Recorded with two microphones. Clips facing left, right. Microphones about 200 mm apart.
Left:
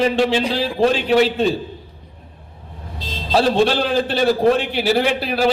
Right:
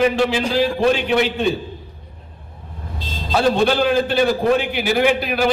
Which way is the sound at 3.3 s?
35° left (ahead or behind).